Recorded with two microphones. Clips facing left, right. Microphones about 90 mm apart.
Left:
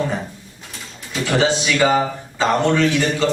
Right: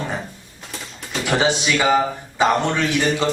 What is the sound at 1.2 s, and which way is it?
Speech, 15° right (ahead or behind).